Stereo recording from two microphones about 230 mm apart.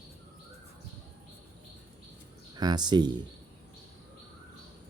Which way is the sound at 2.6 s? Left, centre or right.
Centre.